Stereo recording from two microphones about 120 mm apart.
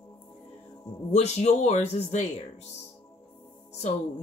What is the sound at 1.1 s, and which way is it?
Speech, 70° left (ahead or behind).